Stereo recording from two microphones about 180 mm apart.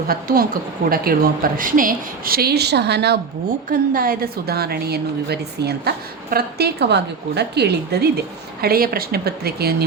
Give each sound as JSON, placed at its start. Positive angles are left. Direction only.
{"t": 0.1, "sound": "speech", "side_deg": -55}
{"t": 3.7, "sound": "a woman's voice", "side_deg": -50}